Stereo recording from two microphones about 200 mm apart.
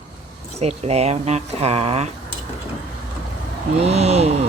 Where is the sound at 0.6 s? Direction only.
30° right (ahead or behind).